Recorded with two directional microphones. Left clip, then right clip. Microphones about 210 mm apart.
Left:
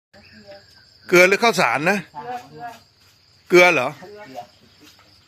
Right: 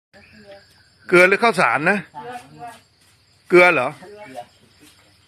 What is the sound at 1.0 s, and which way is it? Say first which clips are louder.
A man's voice: even; centre (ahead or behind).